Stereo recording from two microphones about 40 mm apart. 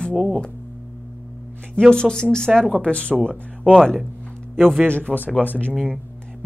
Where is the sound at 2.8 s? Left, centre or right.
Left.